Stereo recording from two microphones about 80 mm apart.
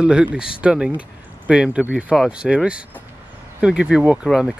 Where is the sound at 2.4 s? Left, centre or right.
Centre.